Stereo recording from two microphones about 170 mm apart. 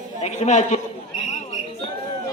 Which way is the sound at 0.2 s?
45° left (ahead or behind).